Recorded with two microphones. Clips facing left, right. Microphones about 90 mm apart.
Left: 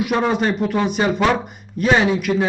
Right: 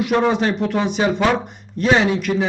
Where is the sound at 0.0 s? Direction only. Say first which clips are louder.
Right 1 dB; centre (ahead or behind).